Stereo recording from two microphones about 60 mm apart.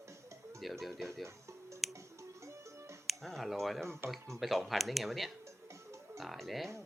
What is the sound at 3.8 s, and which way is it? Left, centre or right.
Speech, right.